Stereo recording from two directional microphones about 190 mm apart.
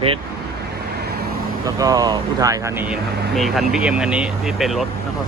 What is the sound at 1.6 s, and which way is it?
Speech, 20° right (ahead or behind).